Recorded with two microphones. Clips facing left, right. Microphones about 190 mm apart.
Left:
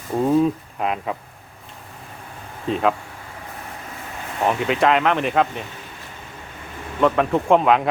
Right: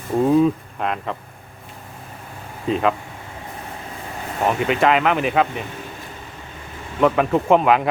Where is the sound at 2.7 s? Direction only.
Centre (ahead or behind).